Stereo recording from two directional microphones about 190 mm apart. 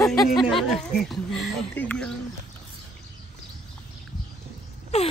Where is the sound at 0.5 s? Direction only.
Centre (ahead or behind).